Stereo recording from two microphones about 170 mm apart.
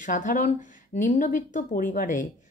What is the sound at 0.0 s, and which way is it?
Speech, 50° left (ahead or behind).